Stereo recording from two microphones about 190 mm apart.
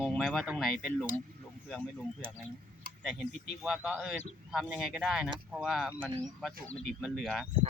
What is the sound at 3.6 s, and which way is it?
Speech, 5° right (ahead or behind).